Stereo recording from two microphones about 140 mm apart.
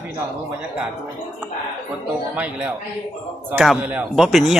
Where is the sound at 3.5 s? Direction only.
Centre (ahead or behind).